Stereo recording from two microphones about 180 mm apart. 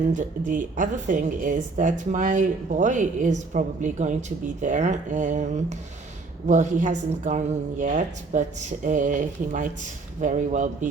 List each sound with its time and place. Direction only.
0.1 s speech: 45° right (ahead or behind)